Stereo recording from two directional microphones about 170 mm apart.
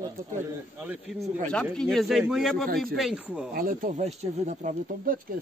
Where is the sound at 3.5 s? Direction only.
55° right (ahead or behind).